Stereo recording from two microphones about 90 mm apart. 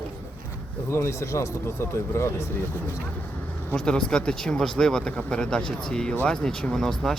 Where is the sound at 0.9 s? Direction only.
30° left (ahead or behind).